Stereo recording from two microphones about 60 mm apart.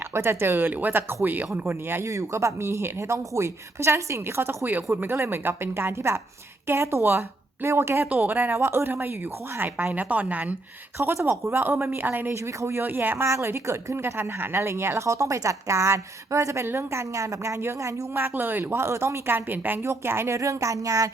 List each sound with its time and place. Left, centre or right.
0.1 s a woman's voice: right
1.6 s a woman's voice: right
8.1 s a woman's voice: right
11.0 s a woman's voice: right
12.3 s a woman's voice: right
12.8 s a woman's voice: right
20.4 s speech: right